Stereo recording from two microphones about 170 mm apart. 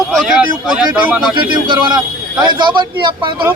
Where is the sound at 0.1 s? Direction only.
5° right (ahead or behind).